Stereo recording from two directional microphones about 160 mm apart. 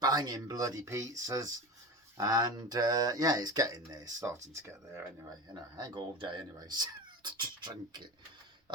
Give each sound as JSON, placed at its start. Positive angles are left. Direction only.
{"t": 0.0, "sound": "speech", "side_deg": -25}